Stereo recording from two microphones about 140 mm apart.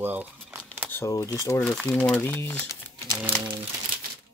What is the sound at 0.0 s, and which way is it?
Crumpling, 15° right (ahead or behind).